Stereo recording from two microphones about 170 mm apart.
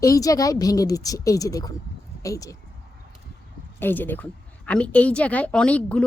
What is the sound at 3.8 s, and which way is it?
A woman's voice, 10° left (ahead or behind).